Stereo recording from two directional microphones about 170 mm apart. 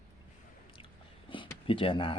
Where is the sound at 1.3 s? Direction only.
30° left (ahead or behind).